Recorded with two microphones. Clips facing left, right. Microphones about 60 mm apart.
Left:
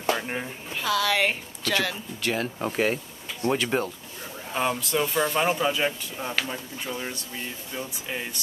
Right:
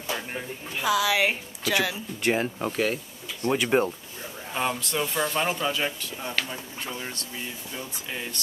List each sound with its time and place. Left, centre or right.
0.1 s a sound: left
0.7 s a woman's voice: centre
2.2 s speech: right
2.7 s speech: centre
3.5 s a woman's voice: centre
4.5 s speech: centre